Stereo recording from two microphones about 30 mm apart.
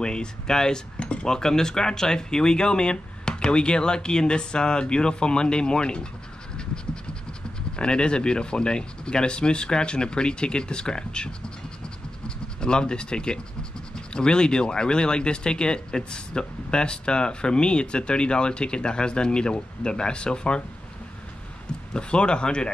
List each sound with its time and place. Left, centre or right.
0.0 s speech: left
0.9 s cutlery: left
1.2 s speech: centre
6.5 s fowl: left
7.7 s speech: left
21.9 s speech: left